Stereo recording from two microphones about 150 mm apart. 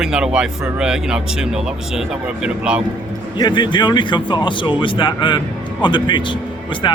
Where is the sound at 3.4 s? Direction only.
30° left (ahead or behind).